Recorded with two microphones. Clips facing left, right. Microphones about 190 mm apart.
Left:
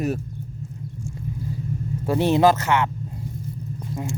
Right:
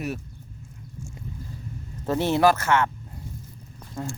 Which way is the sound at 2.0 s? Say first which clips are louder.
Left 3 dB; 15° left (ahead or behind).